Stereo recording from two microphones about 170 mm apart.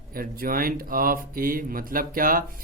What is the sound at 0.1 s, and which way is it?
Speech, 60° right (ahead or behind).